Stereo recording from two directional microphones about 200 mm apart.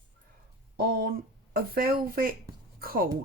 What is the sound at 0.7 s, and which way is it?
Speech, 45° right (ahead or behind).